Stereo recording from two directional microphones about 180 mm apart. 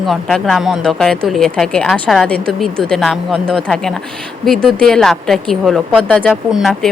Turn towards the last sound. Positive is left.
turn(degrees=0)  # may be behind; listen again after turning